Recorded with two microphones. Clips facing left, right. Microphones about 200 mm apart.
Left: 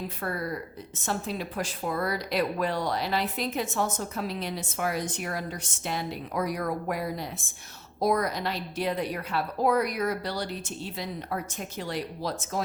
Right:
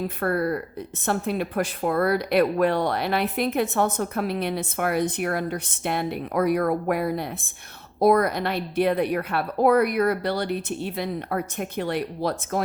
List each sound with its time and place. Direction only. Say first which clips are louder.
0.2 s speech: right 9 dB; 60° right (ahead or behind)